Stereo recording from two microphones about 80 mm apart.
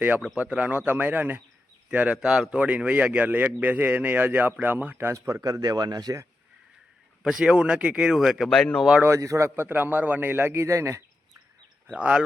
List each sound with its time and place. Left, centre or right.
0.3 s a man's voice: centre; by 6.1 s right
7.2 s speech: centre
8.4 s speech: centre
9.0 s a man's voice: right
9.6 s a man's voice: right
11.9 s speech: centre